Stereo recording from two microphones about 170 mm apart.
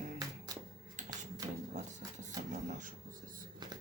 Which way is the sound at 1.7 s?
45° right (ahead or behind).